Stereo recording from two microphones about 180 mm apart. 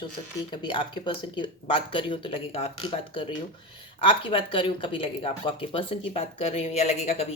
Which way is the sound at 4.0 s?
30° left (ahead or behind).